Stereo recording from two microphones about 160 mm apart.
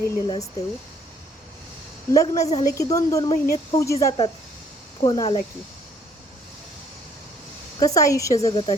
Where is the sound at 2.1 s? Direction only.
20° left (ahead or behind).